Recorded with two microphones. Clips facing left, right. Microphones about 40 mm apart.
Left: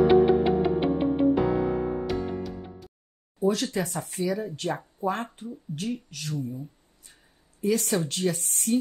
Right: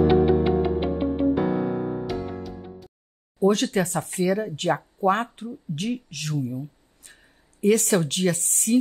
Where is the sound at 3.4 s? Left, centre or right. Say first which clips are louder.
Right 5 dB; right.